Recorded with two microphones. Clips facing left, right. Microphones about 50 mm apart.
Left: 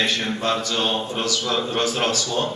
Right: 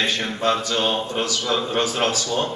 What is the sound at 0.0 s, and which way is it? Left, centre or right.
A man's voice, centre.